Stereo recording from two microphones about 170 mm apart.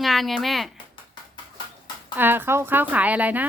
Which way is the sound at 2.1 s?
10° right (ahead or behind).